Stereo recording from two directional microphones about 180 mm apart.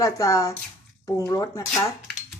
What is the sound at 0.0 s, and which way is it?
A woman's voice, 20° left (ahead or behind).